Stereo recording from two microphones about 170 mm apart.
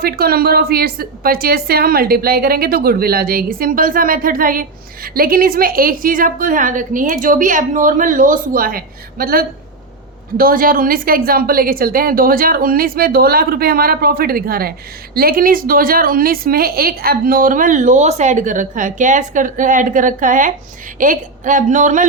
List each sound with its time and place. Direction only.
0.0 s a woman's voice: 65° right (ahead or behind); by 22.0 s 45° right (ahead or behind)